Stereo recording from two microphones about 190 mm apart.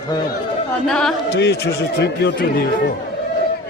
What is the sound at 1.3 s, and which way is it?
A man's voice, 60° left (ahead or behind).